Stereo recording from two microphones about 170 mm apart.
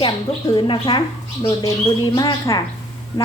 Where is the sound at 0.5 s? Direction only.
30° left (ahead or behind).